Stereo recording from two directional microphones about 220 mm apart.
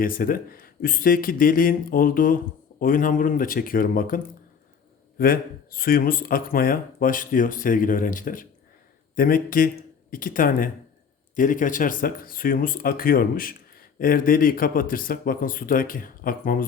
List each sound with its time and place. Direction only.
0.0 s speech: 40° left (ahead or behind)